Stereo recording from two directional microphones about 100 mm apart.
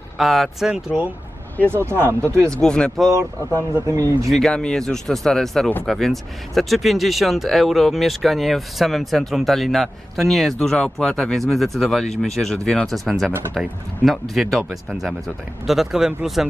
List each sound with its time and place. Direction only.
0.2 s speech: centre (ahead or behind)
1.7 s speech: 25° right (ahead or behind)
2.5 s speech: 10° left (ahead or behind)
3.8 s speech: 35° right (ahead or behind)
4.3 s speech: 5° left (ahead or behind)